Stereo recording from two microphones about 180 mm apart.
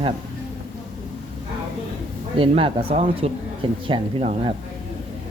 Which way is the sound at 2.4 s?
30° right (ahead or behind).